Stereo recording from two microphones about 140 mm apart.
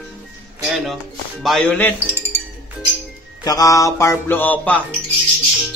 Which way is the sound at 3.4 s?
25° left (ahead or behind).